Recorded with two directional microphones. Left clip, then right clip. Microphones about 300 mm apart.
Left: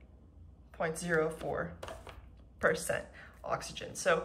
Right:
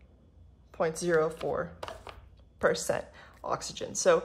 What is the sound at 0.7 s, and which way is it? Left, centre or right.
Speech, centre.